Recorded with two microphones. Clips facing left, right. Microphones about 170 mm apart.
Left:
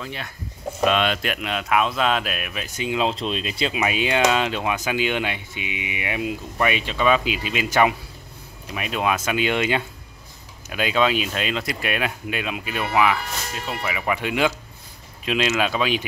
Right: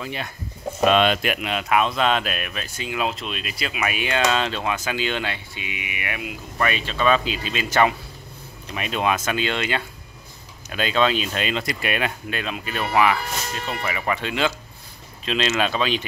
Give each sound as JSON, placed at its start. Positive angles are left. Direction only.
{"t": 0.0, "sound": "speech", "side_deg": -15}
{"t": 0.8, "sound": "speech", "side_deg": -30}
{"t": 1.1, "sound": "speech", "side_deg": -10}
{"t": 2.6, "sound": "speech", "side_deg": 20}